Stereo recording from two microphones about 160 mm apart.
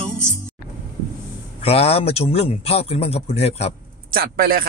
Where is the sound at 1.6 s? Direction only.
40° left (ahead or behind).